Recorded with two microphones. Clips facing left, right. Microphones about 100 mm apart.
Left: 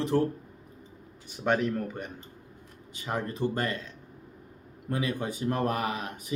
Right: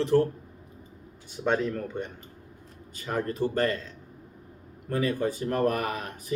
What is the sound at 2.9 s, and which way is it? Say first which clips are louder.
Speech: right 3 dB; 20° left (ahead or behind).